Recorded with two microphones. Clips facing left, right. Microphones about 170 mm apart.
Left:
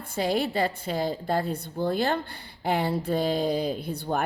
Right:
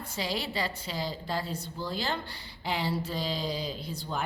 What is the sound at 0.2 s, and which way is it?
A woman's voice, 55° left (ahead or behind).